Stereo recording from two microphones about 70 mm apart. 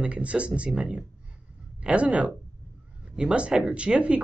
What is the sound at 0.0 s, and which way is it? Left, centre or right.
Speech, centre.